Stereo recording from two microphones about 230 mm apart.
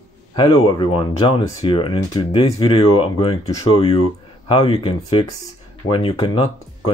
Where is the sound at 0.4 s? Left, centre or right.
Left.